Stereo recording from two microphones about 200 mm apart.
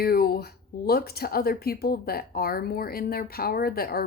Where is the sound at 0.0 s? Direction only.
50° left (ahead or behind).